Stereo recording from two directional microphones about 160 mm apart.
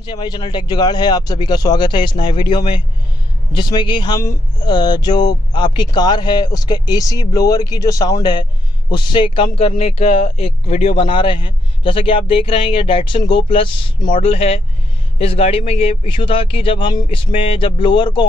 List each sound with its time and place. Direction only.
0.0 s speech: 30° left (ahead or behind)
14.2 s speech: 40° left (ahead or behind)